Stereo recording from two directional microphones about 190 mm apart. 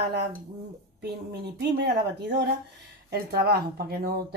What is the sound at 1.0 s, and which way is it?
A woman's voice, 60° right (ahead or behind).